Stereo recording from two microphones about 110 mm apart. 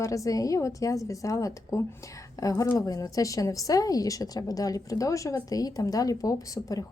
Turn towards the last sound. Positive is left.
turn(degrees=30)  # may be behind; listen again after turning